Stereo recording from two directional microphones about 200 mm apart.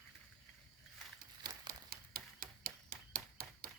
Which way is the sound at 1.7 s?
50° right (ahead or behind).